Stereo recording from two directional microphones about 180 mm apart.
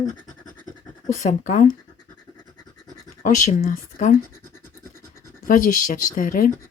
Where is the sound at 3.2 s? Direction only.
40° left (ahead or behind).